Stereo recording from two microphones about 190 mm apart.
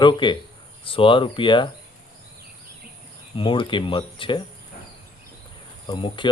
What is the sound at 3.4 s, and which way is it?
Speech, 25° left (ahead or behind).